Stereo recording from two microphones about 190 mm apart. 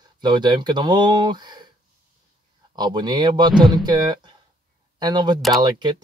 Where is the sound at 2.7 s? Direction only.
20° right (ahead or behind).